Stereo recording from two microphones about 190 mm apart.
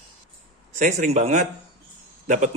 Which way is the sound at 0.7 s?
40° right (ahead or behind).